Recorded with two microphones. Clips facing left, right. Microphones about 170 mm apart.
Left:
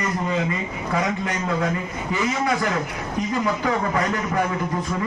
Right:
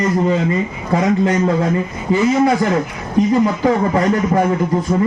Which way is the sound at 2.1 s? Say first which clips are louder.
Right 10 dB; 30° right (ahead or behind).